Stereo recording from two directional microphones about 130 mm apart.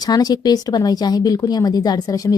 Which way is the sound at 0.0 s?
30° left (ahead or behind).